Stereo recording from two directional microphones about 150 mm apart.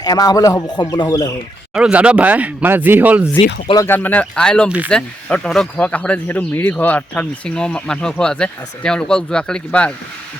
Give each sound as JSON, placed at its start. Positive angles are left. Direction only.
{"t": 0.0, "sound": "a man's voice", "side_deg": 25}
{"t": 1.7, "sound": "speech", "side_deg": -10}
{"t": 3.8, "sound": "speech", "side_deg": 15}